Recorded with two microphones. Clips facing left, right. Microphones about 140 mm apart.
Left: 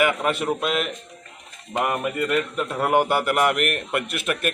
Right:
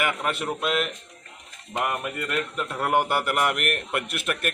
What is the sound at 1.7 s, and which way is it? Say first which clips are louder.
A man's voice: left 4 dB; 20° left (ahead or behind).